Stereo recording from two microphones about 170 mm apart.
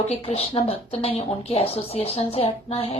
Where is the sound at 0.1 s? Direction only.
35° left (ahead or behind).